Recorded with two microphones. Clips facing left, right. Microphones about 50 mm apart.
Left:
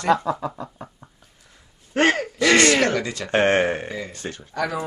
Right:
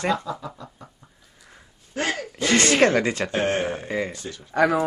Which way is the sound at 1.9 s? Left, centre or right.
Left.